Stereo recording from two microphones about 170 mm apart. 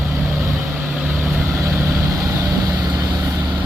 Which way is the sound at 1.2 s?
10° right (ahead or behind).